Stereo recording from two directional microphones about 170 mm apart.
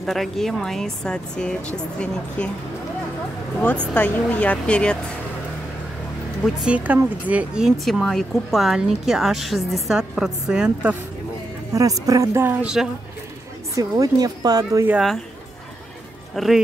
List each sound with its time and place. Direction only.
0.0 s speech: centre (ahead or behind)
3.6 s speech: 10° left (ahead or behind)
6.4 s speech: 5° right (ahead or behind)
11.7 s speech: 20° right (ahead or behind)
12.8 s speech: 5° right (ahead or behind)
13.7 s speech: 20° right (ahead or behind)
16.4 s speech: centre (ahead or behind)